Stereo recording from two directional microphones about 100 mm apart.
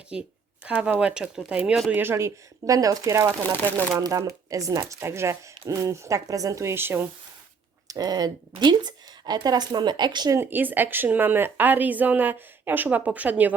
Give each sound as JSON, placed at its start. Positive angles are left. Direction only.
{"t": 0.1, "sound": "speech", "side_deg": -10}
{"t": 1.9, "sound": "speech", "side_deg": -20}
{"t": 7.9, "sound": "a woman's voice", "side_deg": -40}
{"t": 10.3, "sound": "speech", "side_deg": -20}